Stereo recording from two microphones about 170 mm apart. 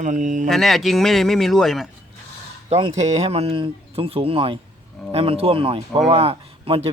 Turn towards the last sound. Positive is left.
turn(degrees=-35)  # may be behind; listen again after turning